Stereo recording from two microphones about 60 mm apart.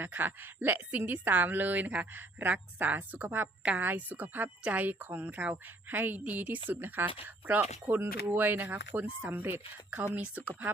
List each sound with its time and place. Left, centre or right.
0.0 s a woman's voice: right